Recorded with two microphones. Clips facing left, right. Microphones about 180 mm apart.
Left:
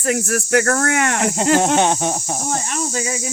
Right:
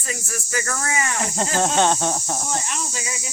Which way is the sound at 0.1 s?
70° left (ahead or behind).